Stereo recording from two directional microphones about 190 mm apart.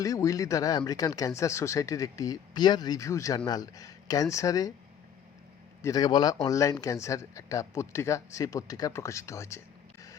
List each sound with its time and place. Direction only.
0.0 s speech: 15° left (ahead or behind)
5.8 s speech: 20° left (ahead or behind)